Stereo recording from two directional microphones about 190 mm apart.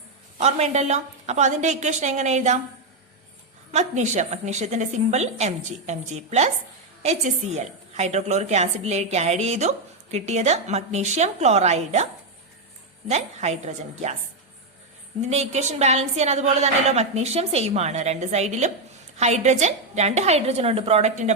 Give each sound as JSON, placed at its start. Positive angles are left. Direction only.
{"t": 0.3, "sound": "a woman's voice", "side_deg": -35}
{"t": 3.7, "sound": "a woman's voice", "side_deg": -40}
{"t": 13.1, "sound": "a woman's voice", "side_deg": -35}
{"t": 15.3, "sound": "a woman's voice", "side_deg": -35}